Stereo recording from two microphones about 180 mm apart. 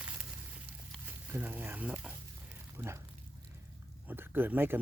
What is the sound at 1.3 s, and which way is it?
Speech, 10° right (ahead or behind).